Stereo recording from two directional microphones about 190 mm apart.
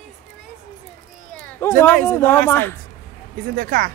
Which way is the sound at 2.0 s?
10° left (ahead or behind).